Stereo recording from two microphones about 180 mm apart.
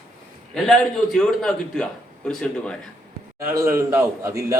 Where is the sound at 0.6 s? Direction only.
Centre (ahead or behind).